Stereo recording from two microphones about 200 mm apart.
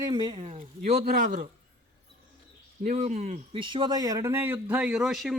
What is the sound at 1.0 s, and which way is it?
Speech, 40° right (ahead or behind).